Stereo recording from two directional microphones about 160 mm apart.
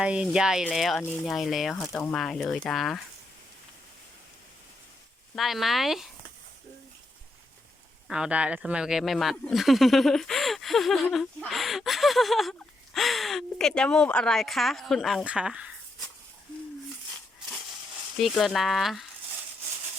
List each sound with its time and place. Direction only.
0.0 s speech: 5° right (ahead or behind)
5.3 s speech: centre (ahead or behind)
8.0 s speech: 5° right (ahead or behind)
18.2 s speech: centre (ahead or behind)